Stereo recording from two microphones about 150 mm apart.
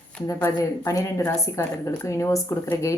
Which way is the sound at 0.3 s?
15° left (ahead or behind).